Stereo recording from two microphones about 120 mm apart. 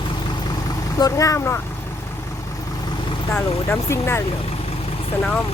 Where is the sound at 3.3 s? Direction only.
20° left (ahead or behind).